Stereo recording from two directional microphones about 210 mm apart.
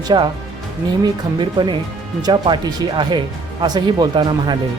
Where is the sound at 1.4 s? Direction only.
20° right (ahead or behind).